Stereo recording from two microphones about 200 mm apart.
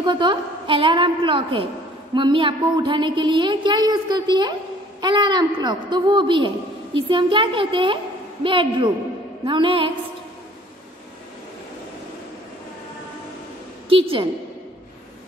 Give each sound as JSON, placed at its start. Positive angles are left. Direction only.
{"t": 0.0, "sound": "a woman's voice", "side_deg": -25}
{"t": 13.8, "sound": "a woman's voice", "side_deg": -25}